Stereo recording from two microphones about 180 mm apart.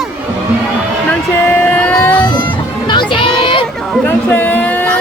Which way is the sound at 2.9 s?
25° left (ahead or behind).